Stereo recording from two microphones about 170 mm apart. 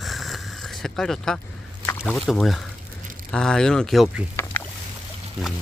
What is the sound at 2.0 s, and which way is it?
Speech, centre (ahead or behind).